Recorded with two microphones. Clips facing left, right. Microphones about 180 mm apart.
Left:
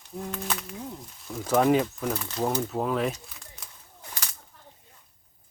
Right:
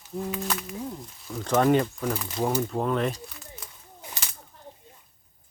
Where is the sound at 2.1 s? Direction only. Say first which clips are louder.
Right 1 dB; 10° right (ahead or behind).